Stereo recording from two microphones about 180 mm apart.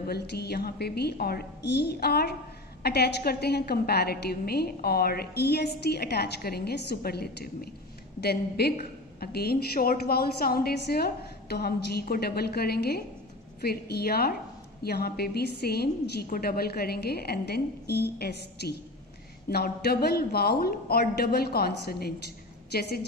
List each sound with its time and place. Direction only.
0.1 s a woman's voice: 65° left (ahead or behind)